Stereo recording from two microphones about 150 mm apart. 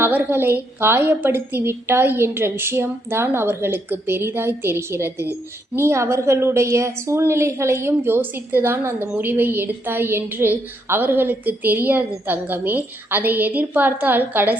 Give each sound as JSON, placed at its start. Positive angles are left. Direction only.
{"t": 0.0, "sound": "a woman's voice", "side_deg": -15}